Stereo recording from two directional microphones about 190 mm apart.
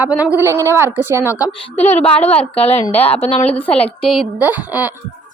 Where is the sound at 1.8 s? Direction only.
35° left (ahead or behind).